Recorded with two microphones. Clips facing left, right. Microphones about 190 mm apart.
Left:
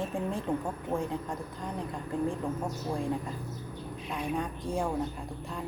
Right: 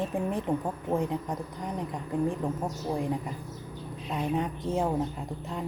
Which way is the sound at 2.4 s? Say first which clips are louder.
Right 2 dB; 20° right (ahead or behind).